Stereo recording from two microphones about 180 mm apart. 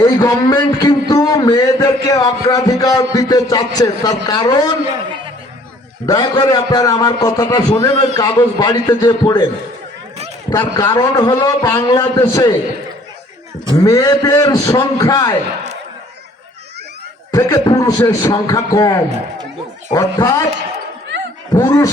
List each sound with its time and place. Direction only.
0.0 s a man's voice: 20° left (ahead or behind)
6.1 s a man's voice: 20° left (ahead or behind)
10.5 s a man's voice: 20° left (ahead or behind)
13.7 s a man's voice: 20° left (ahead or behind)
17.3 s a man's voice: 20° left (ahead or behind)
21.5 s speech: 15° left (ahead or behind)